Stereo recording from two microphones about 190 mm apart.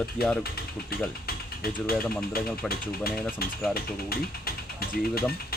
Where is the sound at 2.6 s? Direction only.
5° left (ahead or behind).